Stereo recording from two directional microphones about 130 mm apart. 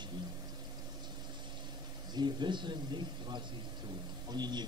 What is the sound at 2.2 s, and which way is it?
A man's voice, 35° right (ahead or behind).